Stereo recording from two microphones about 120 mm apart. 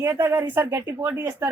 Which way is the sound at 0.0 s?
20° right (ahead or behind).